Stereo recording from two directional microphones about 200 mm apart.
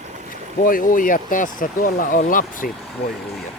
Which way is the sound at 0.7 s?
45° left (ahead or behind).